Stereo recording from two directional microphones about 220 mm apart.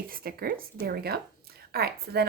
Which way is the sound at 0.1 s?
40° right (ahead or behind).